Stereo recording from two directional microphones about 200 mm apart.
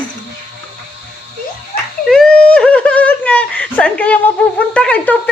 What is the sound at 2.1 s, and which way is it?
Speech, 5° left (ahead or behind).